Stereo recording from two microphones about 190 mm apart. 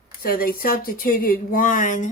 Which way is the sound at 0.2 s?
50° left (ahead or behind).